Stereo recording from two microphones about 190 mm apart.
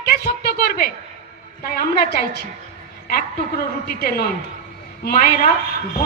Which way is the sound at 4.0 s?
55° left (ahead or behind).